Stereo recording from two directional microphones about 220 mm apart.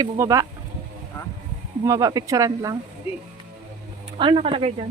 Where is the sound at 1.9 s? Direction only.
15° right (ahead or behind).